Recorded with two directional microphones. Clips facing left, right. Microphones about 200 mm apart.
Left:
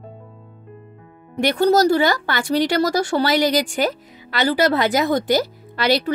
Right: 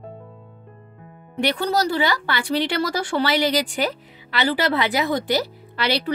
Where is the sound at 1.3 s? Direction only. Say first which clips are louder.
Left 6 dB; 45° left (ahead or behind).